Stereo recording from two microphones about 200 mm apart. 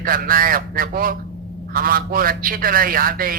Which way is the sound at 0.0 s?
45° right (ahead or behind).